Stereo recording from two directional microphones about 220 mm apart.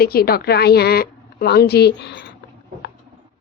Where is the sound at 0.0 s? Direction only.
45° left (ahead or behind).